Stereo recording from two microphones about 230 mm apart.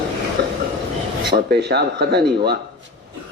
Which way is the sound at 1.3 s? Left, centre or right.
Right.